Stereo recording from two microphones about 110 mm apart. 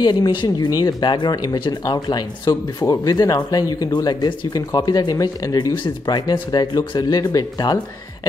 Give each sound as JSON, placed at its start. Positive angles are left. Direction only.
{"t": 0.0, "sound": "speech", "side_deg": 45}